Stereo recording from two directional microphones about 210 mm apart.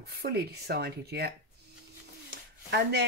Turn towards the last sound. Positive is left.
turn(degrees=-50)  # may be behind; listen again after turning